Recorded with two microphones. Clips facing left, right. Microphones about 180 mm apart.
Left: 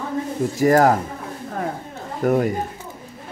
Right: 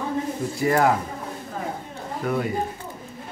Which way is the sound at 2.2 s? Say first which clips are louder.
Left 7 dB; 45° left (ahead or behind).